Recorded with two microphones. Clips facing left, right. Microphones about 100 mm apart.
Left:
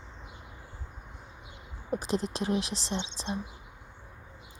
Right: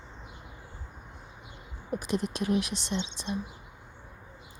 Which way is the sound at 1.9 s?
30° left (ahead or behind).